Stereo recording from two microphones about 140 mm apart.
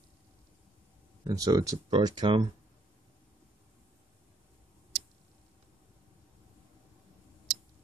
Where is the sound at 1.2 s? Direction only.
25° right (ahead or behind).